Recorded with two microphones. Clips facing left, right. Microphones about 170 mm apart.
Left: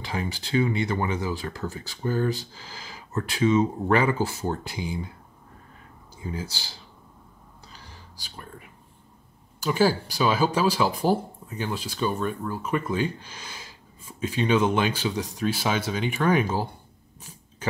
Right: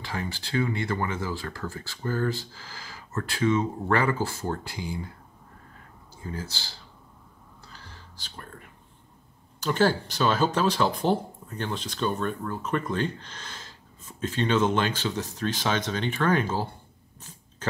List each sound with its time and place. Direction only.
0.0 s speech: 15° left (ahead or behind)
6.1 s speech: 15° left (ahead or behind)
7.6 s a sound: 15° left (ahead or behind)
9.6 s speech: 5° left (ahead or behind)
17.2 s dog: 10° left (ahead or behind)